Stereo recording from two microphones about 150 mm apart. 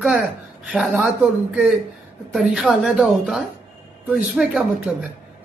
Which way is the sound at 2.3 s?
Centre (ahead or behind).